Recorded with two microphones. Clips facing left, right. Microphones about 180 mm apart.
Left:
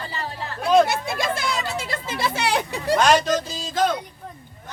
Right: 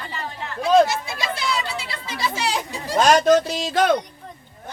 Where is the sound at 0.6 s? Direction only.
55° left (ahead or behind).